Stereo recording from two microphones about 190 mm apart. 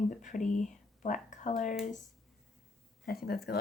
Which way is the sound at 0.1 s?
40° left (ahead or behind).